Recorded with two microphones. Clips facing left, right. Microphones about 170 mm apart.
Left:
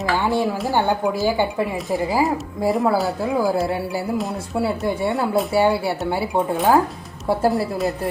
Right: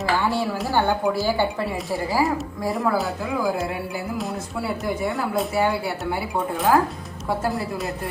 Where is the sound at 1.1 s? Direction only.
15° left (ahead or behind).